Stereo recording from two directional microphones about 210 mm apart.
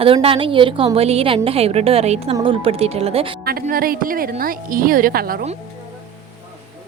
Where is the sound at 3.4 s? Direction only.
45° right (ahead or behind).